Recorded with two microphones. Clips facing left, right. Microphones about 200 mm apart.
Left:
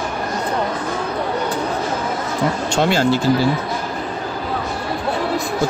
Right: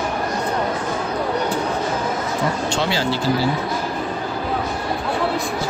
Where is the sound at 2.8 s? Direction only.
50° left (ahead or behind).